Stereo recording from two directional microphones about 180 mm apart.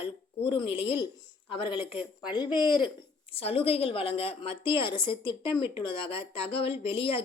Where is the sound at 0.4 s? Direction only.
30° left (ahead or behind).